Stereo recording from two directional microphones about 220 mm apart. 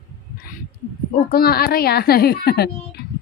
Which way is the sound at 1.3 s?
45° left (ahead or behind).